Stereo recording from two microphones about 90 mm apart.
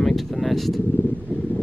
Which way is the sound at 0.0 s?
5° left (ahead or behind).